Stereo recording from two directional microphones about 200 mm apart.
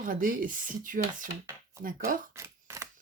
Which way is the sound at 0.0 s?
45° right (ahead or behind).